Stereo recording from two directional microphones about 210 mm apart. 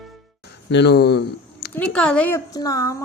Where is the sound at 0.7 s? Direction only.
55° left (ahead or behind).